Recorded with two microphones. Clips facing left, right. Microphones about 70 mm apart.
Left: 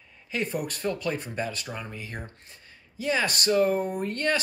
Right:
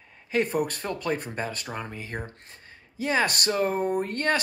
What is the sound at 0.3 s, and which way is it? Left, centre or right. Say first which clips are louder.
Speech: right 5 dB; right.